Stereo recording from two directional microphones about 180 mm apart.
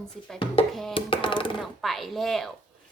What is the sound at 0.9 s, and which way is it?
Speech, 30° left (ahead or behind).